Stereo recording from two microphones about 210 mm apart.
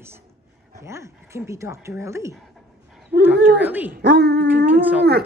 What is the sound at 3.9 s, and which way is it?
Speech, 50° right (ahead or behind).